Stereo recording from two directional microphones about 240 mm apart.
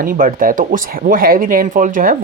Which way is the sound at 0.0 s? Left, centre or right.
Right.